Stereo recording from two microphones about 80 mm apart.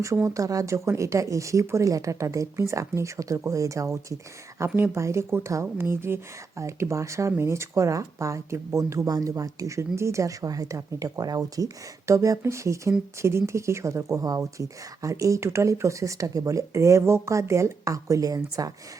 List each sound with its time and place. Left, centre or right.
0.3 s speech: right